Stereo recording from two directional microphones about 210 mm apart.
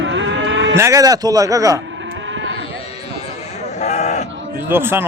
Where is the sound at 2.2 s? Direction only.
60° right (ahead or behind).